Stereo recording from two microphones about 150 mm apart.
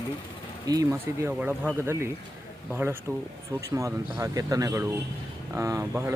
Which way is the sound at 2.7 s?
15° right (ahead or behind).